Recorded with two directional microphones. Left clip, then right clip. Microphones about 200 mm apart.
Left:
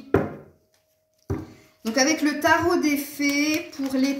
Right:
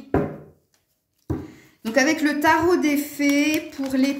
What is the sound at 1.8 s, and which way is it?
Speech, 50° right (ahead or behind).